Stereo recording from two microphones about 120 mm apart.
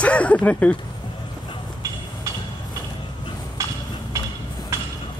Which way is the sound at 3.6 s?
25° right (ahead or behind).